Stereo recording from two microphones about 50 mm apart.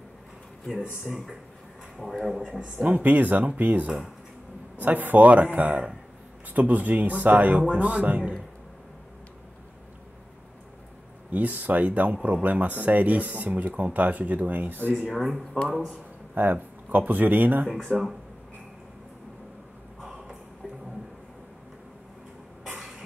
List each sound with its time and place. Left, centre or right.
2.0 s a man's voice: centre
2.7 s speech: right
11.3 s speech: right
15.1 s a man's voice: centre
16.3 s speech: right
17.6 s a man's voice: centre
20.0 s a sound: centre